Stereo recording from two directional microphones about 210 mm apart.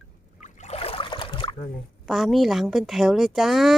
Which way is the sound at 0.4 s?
30° left (ahead or behind).